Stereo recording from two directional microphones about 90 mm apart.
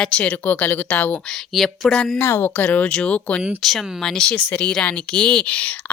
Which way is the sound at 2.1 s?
25° left (ahead or behind).